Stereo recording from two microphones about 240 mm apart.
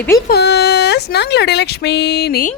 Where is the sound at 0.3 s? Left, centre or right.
Left.